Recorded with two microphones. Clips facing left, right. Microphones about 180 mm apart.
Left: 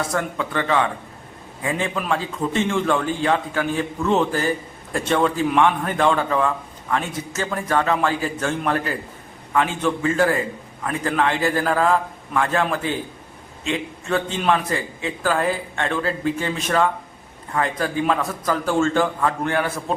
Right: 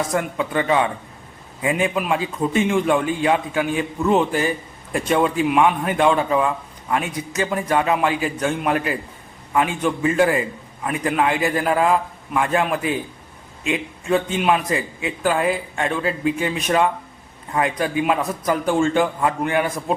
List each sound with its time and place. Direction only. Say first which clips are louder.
0.1 s a man's voice: right 2 dB; 15° right (ahead or behind)
14.3 s a man's voice: right 2 dB; 10° right (ahead or behind)